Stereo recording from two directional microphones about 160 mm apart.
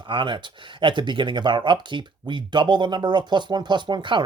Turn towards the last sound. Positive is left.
turn(degrees=-30)  # may be behind; listen again after turning